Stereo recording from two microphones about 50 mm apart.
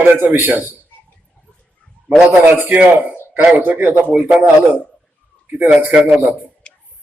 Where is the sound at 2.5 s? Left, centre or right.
Right.